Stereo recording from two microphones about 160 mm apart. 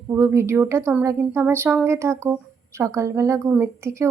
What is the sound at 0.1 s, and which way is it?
A woman's voice, 15° right (ahead or behind).